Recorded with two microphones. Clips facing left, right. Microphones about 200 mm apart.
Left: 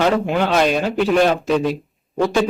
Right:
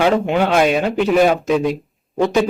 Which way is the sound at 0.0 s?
5° right (ahead or behind).